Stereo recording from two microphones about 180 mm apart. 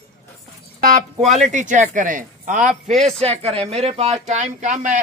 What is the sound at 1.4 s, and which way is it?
Speech, 45° right (ahead or behind).